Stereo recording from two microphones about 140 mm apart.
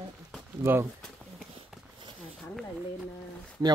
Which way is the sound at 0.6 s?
20° right (ahead or behind).